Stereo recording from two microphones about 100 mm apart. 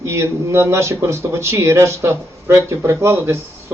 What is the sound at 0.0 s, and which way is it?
A man's voice, 25° right (ahead or behind).